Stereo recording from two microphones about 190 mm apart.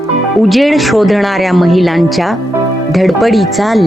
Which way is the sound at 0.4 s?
Centre (ahead or behind).